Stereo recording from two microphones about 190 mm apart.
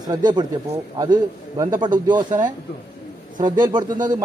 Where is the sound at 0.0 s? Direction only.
20° right (ahead or behind).